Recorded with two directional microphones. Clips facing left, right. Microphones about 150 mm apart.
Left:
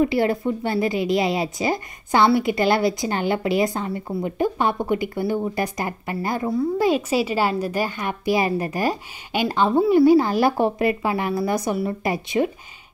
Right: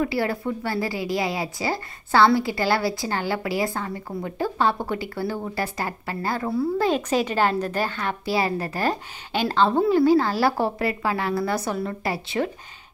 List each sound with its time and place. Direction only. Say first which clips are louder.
0.0 s a woman's voice: left 5 dB; 20° left (ahead or behind)